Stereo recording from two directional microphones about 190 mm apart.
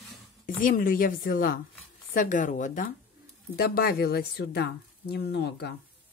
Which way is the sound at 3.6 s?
55° left (ahead or behind).